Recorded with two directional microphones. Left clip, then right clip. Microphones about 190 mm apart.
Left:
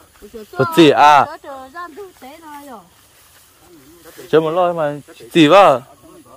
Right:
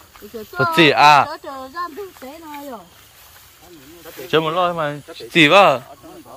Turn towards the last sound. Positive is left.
turn(degrees=40)  # may be behind; listen again after turning